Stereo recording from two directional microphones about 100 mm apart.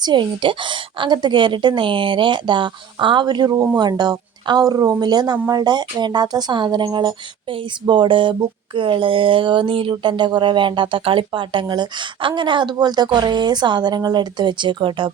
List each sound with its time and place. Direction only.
0.0 s speech: 50° right (ahead or behind)
7.5 s a sound: 55° right (ahead or behind)
8.4 s speech: 55° right (ahead or behind)